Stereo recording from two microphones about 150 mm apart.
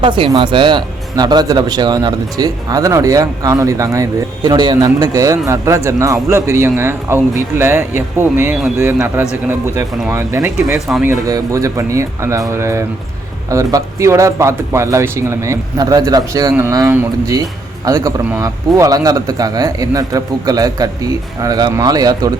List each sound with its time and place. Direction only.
0.0 s speech: 30° right (ahead or behind)